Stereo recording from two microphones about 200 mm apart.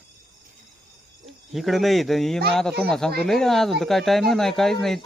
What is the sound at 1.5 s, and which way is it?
Speech, centre (ahead or behind).